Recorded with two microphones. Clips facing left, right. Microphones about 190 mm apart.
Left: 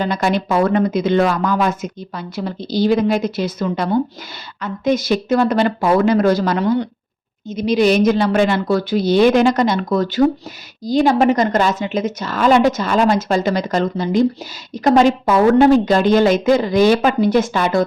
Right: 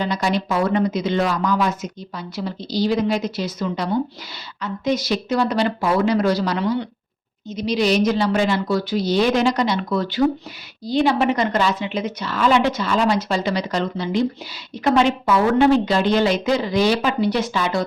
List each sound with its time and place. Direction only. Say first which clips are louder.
0.0 s speech: left 3 dB; 55° left (ahead or behind)